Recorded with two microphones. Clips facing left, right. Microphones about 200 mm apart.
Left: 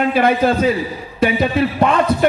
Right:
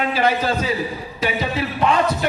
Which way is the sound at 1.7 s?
50° left (ahead or behind).